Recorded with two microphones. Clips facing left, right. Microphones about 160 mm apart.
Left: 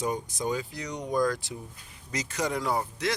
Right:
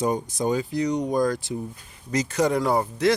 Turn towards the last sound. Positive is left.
turn(degrees=-50)  # may be behind; listen again after turning